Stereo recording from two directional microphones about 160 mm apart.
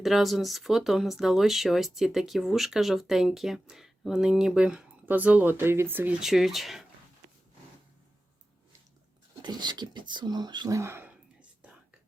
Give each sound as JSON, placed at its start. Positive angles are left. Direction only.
{"t": 0.0, "sound": "speech", "side_deg": 0}
{"t": 9.4, "sound": "speech", "side_deg": -25}